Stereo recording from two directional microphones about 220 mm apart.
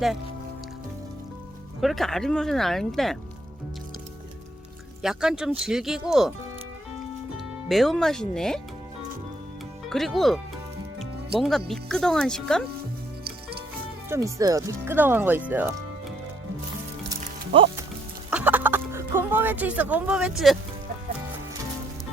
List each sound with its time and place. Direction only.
1.8 s speech: centre (ahead or behind)
5.0 s speech: 5° right (ahead or behind)
7.3 s speech: centre (ahead or behind)
9.9 s speech: centre (ahead or behind)
14.1 s speech: 15° right (ahead or behind)
17.1 s music: 25° right (ahead or behind)
18.3 s music: 5° right (ahead or behind)